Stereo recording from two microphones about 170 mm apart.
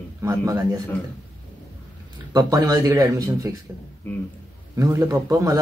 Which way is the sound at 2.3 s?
20° right (ahead or behind).